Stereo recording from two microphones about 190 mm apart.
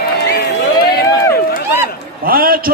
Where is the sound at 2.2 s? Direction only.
50° right (ahead or behind).